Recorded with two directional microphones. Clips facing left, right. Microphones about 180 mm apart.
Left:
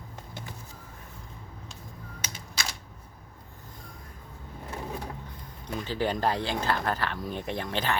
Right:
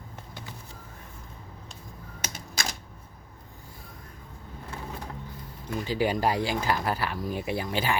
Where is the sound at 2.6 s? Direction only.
50° right (ahead or behind).